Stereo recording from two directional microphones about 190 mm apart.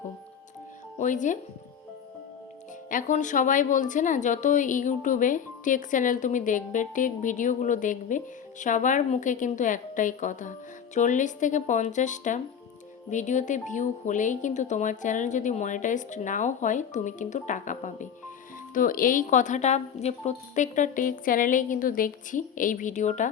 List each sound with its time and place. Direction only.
0.9 s speech: 40° left (ahead or behind)
2.9 s a woman's voice: 40° left (ahead or behind)